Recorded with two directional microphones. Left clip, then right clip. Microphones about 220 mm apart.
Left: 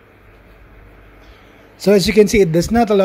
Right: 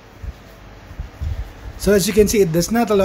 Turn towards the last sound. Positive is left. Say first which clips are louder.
# left 3 dB
turn(degrees=25)  # may be behind; listen again after turning